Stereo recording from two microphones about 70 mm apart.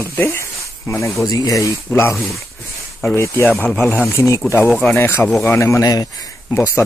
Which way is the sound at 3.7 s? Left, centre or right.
Left.